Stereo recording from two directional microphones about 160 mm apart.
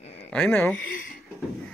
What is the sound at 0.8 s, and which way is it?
Speech, 60° left (ahead or behind).